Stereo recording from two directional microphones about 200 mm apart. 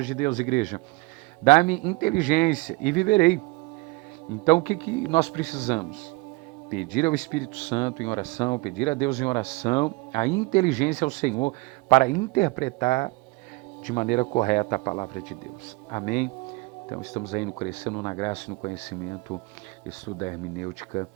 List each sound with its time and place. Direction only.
0.0 s speech: 40° left (ahead or behind)
4.4 s speech: 35° left (ahead or behind)
7.7 s speech: 25° left (ahead or behind)
17.8 s speech: 20° left (ahead or behind)